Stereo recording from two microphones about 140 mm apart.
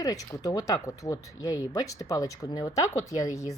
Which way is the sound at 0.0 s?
25° left (ahead or behind).